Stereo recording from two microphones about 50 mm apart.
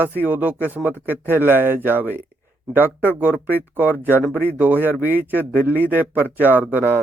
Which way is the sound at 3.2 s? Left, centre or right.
Right.